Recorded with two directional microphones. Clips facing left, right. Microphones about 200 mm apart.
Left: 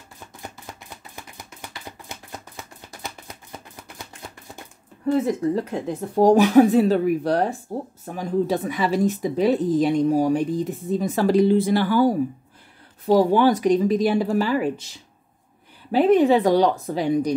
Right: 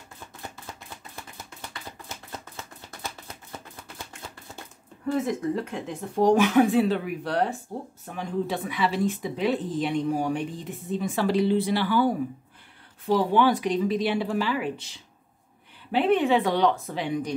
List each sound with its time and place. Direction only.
1.9 s a sound: 15° left (ahead or behind)
5.0 s speech: 35° left (ahead or behind)
15.9 s speech: 40° left (ahead or behind)